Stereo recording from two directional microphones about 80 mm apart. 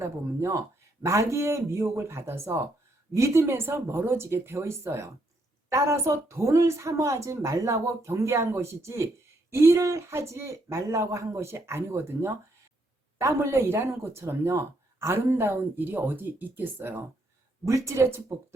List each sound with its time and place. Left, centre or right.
0.0 s speech: right
17.7 s speech: right